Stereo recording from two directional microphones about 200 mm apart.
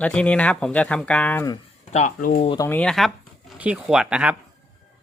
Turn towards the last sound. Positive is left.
turn(degrees=-5)  # may be behind; listen again after turning